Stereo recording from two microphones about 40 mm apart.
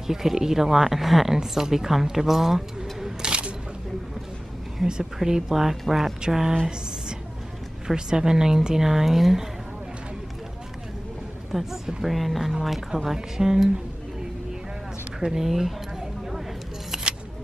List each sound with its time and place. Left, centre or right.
0.0 s speech: centre
3.2 s single-lens reflex camera: right
4.8 s speech: centre
7.8 s speech: centre
11.5 s a woman's voice: centre
15.1 s speech: centre
16.9 s single-lens reflex camera: centre